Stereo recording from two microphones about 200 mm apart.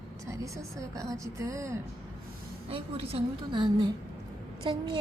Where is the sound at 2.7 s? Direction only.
30° right (ahead or behind).